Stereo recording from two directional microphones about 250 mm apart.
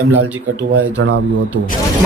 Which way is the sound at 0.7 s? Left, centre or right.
Right.